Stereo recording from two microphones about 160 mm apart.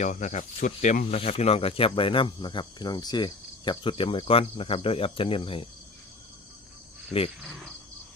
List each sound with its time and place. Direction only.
0.0 s speech: 50° left (ahead or behind); by 5.6 s 35° left (ahead or behind)